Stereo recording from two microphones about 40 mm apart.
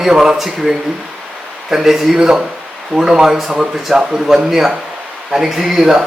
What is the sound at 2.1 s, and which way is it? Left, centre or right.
A man's voice, centre.